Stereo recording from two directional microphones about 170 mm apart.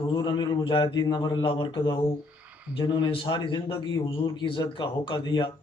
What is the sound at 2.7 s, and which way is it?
A man's voice, 30° left (ahead or behind).